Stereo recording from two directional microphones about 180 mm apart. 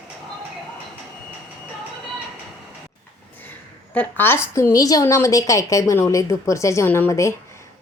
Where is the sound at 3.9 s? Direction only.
10° left (ahead or behind).